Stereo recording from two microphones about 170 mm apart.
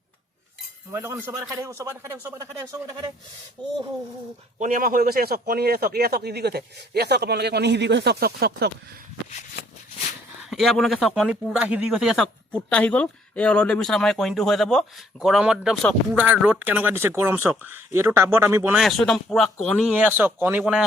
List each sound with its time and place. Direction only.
0.9 s speech: 15° right (ahead or behind)
3.6 s speech: 10° left (ahead or behind)
4.6 s a man's voice: 55° right (ahead or behind); by 8.7 s 70° right (ahead or behind)
9.6 s a sound: 65° left (ahead or behind)
10.5 s speech: centre (ahead or behind)
16.1 s speech: 10° right (ahead or behind)
18.8 s speech: centre (ahead or behind)